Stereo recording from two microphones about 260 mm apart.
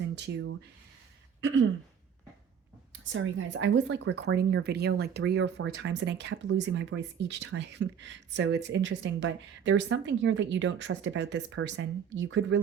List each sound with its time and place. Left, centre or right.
0.0 s speech: right
1.4 s a sound: right
3.0 s speech: right